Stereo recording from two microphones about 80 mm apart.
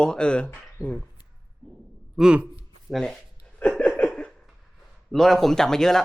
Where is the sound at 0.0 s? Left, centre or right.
Centre.